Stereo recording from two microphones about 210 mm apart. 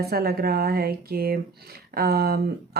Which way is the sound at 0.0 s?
50° right (ahead or behind).